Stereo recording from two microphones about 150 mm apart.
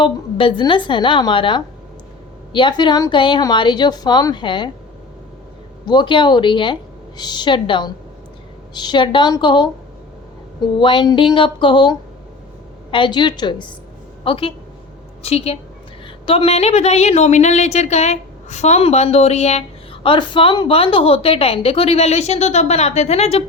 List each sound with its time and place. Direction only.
0.0 s a woman's voice: 35° left (ahead or behind)
5.8 s a woman's voice: 30° left (ahead or behind)